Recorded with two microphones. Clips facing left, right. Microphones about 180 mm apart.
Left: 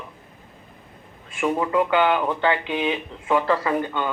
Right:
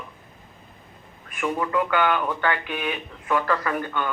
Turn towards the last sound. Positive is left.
turn(degrees=20)  # may be behind; listen again after turning